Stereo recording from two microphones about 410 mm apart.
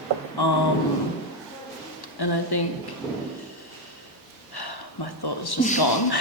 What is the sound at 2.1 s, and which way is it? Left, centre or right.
Speech, left.